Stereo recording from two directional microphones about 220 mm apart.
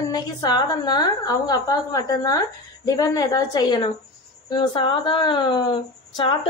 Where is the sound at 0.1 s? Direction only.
20° left (ahead or behind).